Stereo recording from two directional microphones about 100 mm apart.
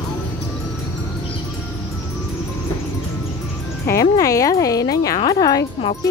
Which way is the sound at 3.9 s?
35° left (ahead or behind).